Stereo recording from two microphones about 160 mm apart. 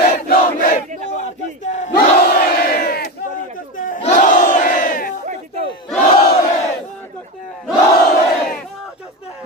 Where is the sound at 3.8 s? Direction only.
60° left (ahead or behind).